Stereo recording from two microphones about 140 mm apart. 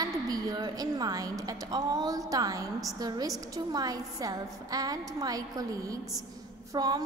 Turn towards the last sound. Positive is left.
turn(degrees=-25)  # may be behind; listen again after turning